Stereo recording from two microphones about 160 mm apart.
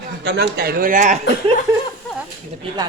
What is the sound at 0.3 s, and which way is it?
Speech, 85° right.